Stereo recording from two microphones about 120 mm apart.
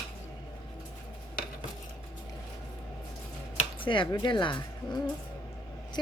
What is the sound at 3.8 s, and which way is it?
Speech, 45° left (ahead or behind).